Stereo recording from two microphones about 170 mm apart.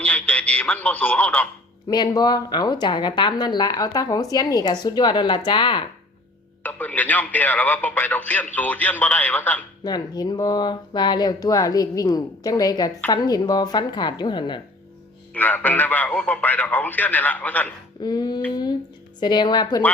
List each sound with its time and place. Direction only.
0.0 s a man's voice: 10° left (ahead or behind)
1.9 s a woman's voice: 25° left (ahead or behind)
6.6 s speech: 10° left (ahead or behind)
9.8 s a woman's voice: 25° left (ahead or behind)
15.3 s speech: 10° left (ahead or behind)
18.0 s a woman's voice: 25° left (ahead or behind)